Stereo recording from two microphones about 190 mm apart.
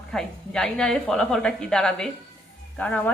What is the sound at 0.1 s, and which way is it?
A woman's voice, 5° left (ahead or behind).